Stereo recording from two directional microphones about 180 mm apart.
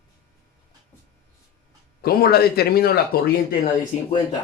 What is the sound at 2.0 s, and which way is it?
Speech, 55° left (ahead or behind).